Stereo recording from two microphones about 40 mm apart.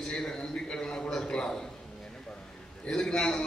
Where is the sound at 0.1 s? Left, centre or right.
Centre.